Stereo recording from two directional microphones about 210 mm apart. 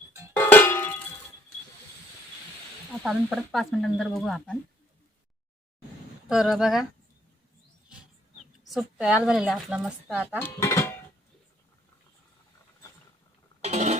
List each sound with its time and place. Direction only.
0.1 s cowbell: 15° right (ahead or behind)
0.3 s cowbell: 10° left (ahead or behind)
3.0 s a woman's voice: centre (ahead or behind)
6.2 s a woman's voice: 5° right (ahead or behind)
8.6 s a woman's voice: centre (ahead or behind)
10.3 s speech: 10° left (ahead or behind)
13.6 s a sound: 30° right (ahead or behind)